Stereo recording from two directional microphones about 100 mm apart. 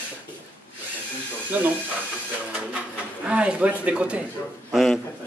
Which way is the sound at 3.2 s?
10° right (ahead or behind).